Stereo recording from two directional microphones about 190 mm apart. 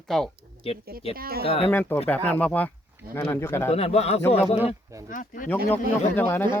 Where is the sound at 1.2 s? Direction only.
50° right (ahead or behind).